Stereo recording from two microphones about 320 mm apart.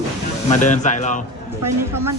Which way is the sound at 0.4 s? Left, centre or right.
Left.